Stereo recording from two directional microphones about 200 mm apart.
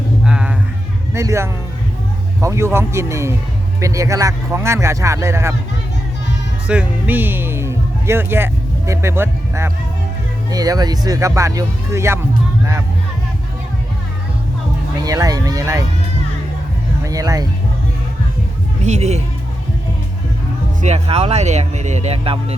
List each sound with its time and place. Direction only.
0.3 s music: 5° right (ahead or behind)
1.1 s speech: 15° right (ahead or behind)
6.7 s speech: 5° right (ahead or behind)
15.0 s speech: 15° right (ahead or behind)
17.0 s speech: 15° right (ahead or behind)
18.8 s speech: 35° right (ahead or behind)
20.8 s speech: 30° right (ahead or behind)